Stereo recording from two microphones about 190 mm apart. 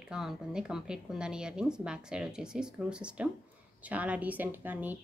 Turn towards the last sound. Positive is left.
turn(degrees=-10)  # may be behind; listen again after turning